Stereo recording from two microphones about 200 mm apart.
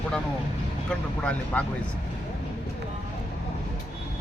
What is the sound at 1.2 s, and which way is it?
Speech, 5° left (ahead or behind).